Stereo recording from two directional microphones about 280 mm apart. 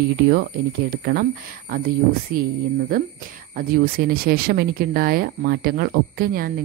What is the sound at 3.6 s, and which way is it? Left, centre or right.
Speech, right.